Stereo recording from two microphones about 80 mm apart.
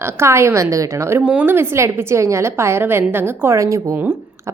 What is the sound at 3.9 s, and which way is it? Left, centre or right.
Speech, right.